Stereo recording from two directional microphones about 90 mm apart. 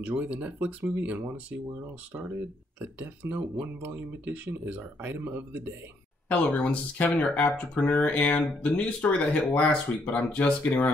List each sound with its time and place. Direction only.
0.0 s speech: 20° right (ahead or behind)
2.8 s speech: 20° right (ahead or behind)
6.2 s speech: 15° left (ahead or behind)